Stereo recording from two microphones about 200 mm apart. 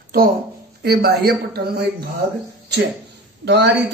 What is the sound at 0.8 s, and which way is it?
Speech, 50° right (ahead or behind).